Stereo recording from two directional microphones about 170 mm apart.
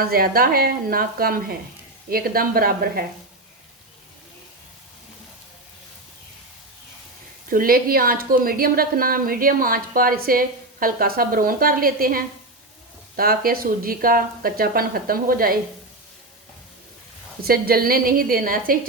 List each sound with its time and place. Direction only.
0.0 s a woman's voice: 60° right (ahead or behind)
7.5 s a woman's voice: 60° right (ahead or behind)
17.4 s a woman's voice: 60° right (ahead or behind)